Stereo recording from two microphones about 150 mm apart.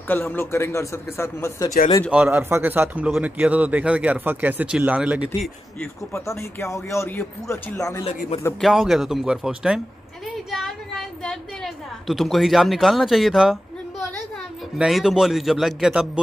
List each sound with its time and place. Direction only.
0.1 s speech: 15° left (ahead or behind)
2.0 s speech: 10° right (ahead or behind)
5.8 s speech: 15° left (ahead or behind)
8.5 s a man's voice: centre (ahead or behind)
14.8 s a man's voice: centre (ahead or behind)